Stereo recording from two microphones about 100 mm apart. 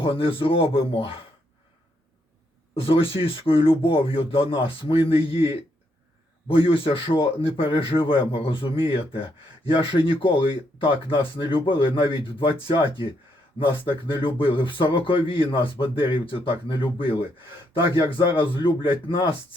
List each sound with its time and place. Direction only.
0.0 s speech: 65° left (ahead or behind)
2.7 s speech: 65° left (ahead or behind)